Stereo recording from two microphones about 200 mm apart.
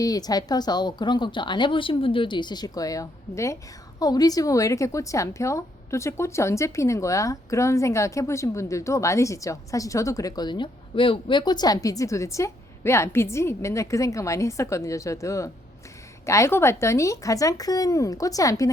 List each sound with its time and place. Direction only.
0.0 s a woman's voice: 20° left (ahead or behind)